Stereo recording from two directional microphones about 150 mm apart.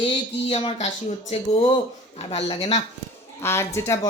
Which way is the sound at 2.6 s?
50° left (ahead or behind).